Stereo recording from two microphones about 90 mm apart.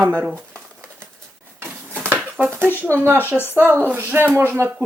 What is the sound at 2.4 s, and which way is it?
Speech, 20° right (ahead or behind).